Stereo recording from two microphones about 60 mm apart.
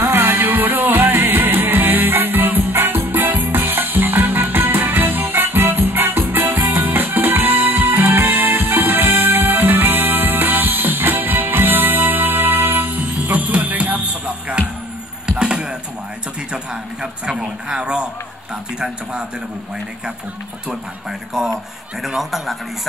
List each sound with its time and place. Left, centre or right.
0.0 s music: right
15.2 s chop: centre
17.0 s a sound: centre
21.3 s a man's voice: centre